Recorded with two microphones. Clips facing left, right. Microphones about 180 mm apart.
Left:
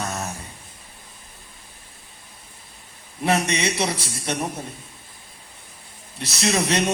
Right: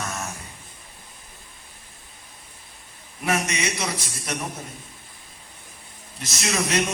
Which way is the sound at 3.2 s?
30° left (ahead or behind).